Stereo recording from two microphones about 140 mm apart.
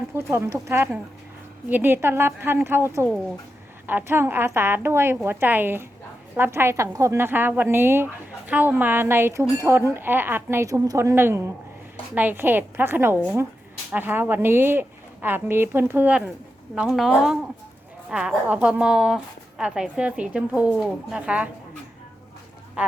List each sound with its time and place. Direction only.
0.3 s a woman's voice: 20° right (ahead or behind)